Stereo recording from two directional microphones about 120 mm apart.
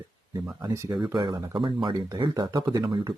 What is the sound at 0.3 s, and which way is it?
Speech, 25° right (ahead or behind).